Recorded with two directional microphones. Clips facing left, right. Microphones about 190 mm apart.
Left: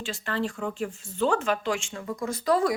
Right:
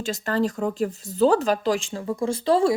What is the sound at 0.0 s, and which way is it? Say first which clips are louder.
Speech: right 6 dB; 40° right (ahead or behind).